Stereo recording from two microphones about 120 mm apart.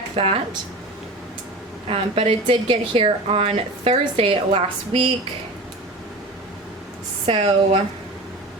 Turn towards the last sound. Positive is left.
turn(degrees=-50)  # may be behind; listen again after turning